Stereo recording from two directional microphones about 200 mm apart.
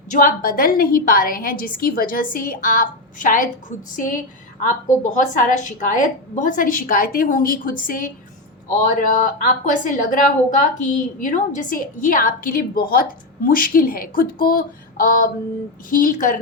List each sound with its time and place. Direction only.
0.1 s a woman's voice: 45° left (ahead or behind)
9.6 s a woman's voice: 40° left (ahead or behind)